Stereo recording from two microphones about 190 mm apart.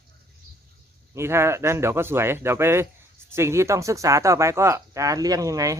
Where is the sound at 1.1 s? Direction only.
15° right (ahead or behind).